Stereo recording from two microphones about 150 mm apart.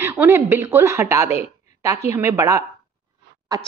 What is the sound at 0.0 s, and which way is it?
A woman's voice, 15° right (ahead or behind).